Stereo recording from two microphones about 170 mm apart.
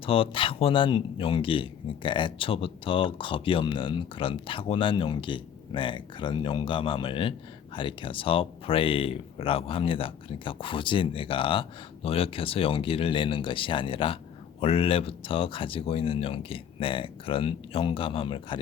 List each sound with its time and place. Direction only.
0.0 s speech: 30° left (ahead or behind)